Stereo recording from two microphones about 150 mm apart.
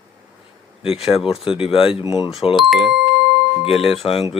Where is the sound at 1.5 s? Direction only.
40° left (ahead or behind).